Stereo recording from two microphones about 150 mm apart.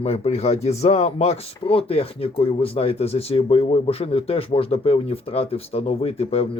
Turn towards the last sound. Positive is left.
turn(degrees=45)  # may be behind; listen again after turning